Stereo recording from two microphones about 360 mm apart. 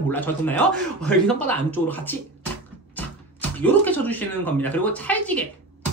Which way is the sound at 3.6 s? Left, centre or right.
Centre.